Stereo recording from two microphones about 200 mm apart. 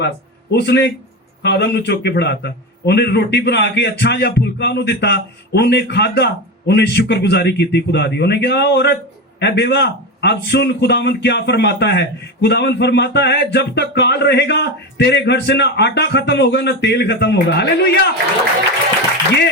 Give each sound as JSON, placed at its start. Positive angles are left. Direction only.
{"t": 0.5, "sound": "a man's voice", "side_deg": 55}